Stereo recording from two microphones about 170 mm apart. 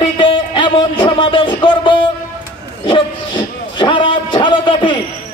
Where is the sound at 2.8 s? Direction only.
30° left (ahead or behind).